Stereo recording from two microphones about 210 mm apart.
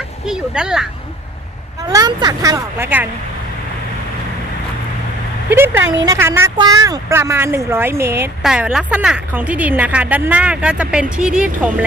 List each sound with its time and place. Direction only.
0.3 s speech: 5° right (ahead or behind)
1.9 s speech: 20° right (ahead or behind)
5.5 s speech: 10° right (ahead or behind)